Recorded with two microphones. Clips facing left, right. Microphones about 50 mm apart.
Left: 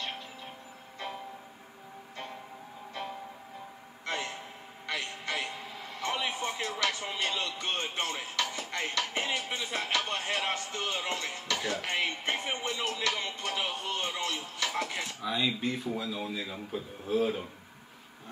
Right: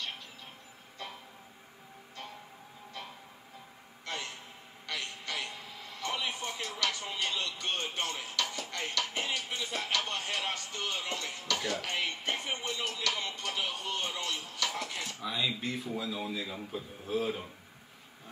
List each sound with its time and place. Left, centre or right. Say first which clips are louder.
4.0 s a sound: left 5 dB; centre
5.9 s music: left 3 dB; left
15.1 s a man's voice: left 3 dB; centre